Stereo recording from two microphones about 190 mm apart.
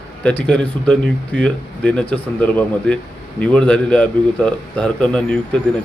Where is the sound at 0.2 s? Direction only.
5° left (ahead or behind).